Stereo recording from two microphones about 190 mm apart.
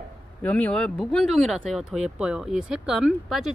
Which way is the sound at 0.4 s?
10° left (ahead or behind).